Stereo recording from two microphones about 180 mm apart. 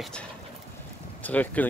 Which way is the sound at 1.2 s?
10° left (ahead or behind).